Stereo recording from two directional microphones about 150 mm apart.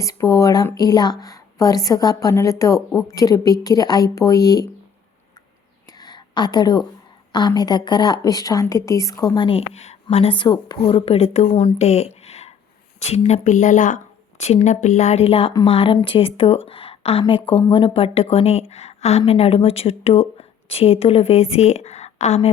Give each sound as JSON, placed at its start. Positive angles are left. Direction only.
{"t": 0.0, "sound": "a woman's voice", "side_deg": 20}
{"t": 6.0, "sound": "a sound", "side_deg": 30}
{"t": 7.3, "sound": "a woman's voice", "side_deg": 25}